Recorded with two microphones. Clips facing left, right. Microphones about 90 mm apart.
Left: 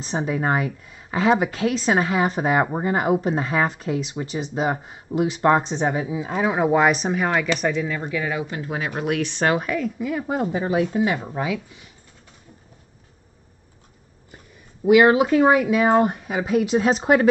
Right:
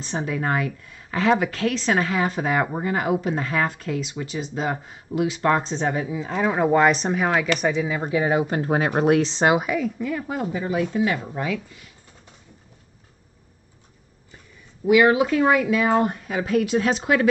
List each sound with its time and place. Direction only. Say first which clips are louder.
0.0 s a woman's voice: left 2 dB; 20° left (ahead or behind)
5.7 s speech: left 1 dB; 15° left (ahead or behind); by 8.0 s 5° right (ahead or behind)
8.0 s speech: right 5 dB; 30° right (ahead or behind)
9.6 s speech: right 1 dB; 5° right (ahead or behind)
9.9 s speech: left 1 dB; 5° left (ahead or behind)
10.5 s a woman's voice: left 1 dB; 30° left (ahead or behind)
15.0 s a woman's voice: left 2 dB; 30° left (ahead or behind)